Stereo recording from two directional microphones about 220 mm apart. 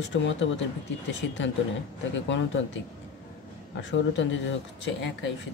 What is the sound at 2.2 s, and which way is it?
Speech, 55° left (ahead or behind).